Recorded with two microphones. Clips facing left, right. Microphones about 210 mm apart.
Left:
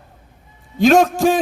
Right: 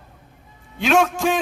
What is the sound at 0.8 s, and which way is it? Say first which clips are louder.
Speech: left 6 dB; 40° left (ahead or behind).